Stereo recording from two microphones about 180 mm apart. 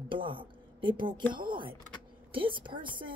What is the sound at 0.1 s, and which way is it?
A woman's voice, 30° right (ahead or behind).